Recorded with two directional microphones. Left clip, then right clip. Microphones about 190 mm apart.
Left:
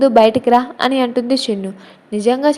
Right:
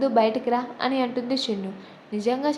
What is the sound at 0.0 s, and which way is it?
A woman's voice, 35° left (ahead or behind).